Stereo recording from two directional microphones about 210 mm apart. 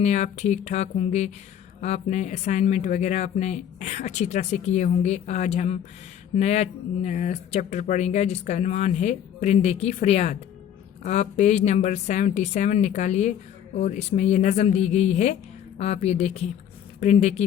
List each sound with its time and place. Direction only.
0.0 s speech: 35° left (ahead or behind)